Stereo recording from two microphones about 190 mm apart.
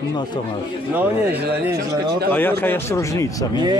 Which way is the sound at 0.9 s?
10° right (ahead or behind).